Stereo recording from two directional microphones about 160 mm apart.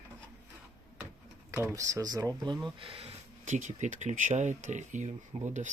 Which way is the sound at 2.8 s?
35° right (ahead or behind).